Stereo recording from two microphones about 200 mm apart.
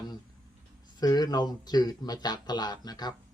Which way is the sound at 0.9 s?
20° left (ahead or behind).